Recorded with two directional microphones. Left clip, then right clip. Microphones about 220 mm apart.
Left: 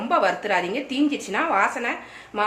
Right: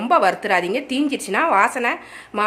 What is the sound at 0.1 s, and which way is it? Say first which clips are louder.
A woman's voice: right 4 dB; 55° right (ahead or behind).